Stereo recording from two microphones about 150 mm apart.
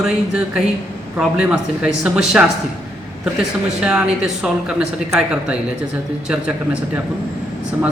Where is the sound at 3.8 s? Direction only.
5° right (ahead or behind).